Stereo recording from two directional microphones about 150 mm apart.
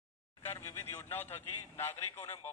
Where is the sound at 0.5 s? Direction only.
15° left (ahead or behind).